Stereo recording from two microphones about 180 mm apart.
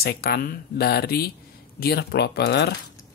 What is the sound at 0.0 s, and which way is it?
Speech, 60° left (ahead or behind).